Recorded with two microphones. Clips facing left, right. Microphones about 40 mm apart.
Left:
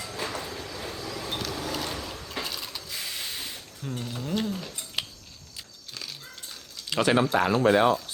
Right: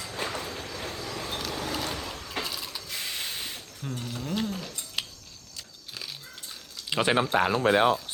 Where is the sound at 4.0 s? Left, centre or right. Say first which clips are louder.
Left 1 dB; centre.